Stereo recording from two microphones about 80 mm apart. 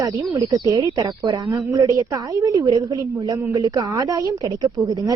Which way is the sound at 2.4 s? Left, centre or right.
Right.